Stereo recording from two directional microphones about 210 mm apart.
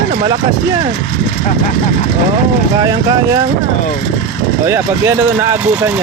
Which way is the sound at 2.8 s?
15° right (ahead or behind).